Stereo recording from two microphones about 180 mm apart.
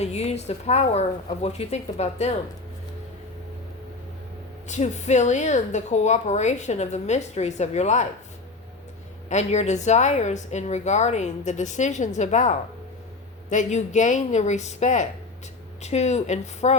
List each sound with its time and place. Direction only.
0.0 s a woman's voice: 35° left (ahead or behind)
4.7 s a woman's voice: 40° left (ahead or behind)
9.3 s a woman's voice: 40° left (ahead or behind)